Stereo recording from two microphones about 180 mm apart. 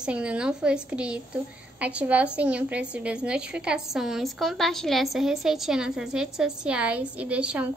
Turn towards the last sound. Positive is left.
turn(degrees=-5)  # may be behind; listen again after turning